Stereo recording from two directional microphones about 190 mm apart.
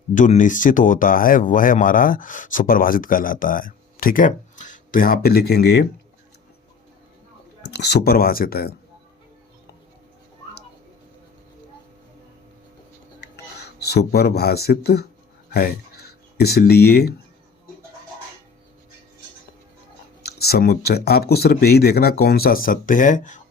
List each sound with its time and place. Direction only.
0.1 s speech: 40° left (ahead or behind); by 5.9 s 60° left (ahead or behind)
7.6 s speech: 60° left (ahead or behind)
13.3 s speech: 60° left (ahead or behind)
20.2 s speech: 55° left (ahead or behind)